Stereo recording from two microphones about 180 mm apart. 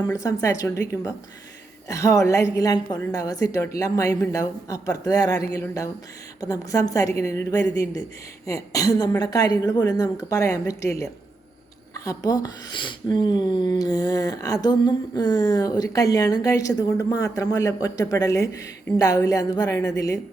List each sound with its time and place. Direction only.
0.1 s a woman's voice: 20° left (ahead or behind)